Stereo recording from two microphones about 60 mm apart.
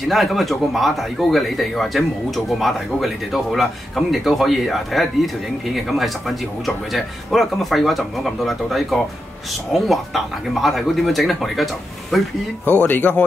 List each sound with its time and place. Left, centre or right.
0.1 s speech: centre
12.8 s speech: left